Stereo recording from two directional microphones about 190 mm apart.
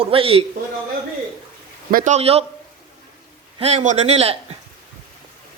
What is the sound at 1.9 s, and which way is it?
Speech, 45° right (ahead or behind).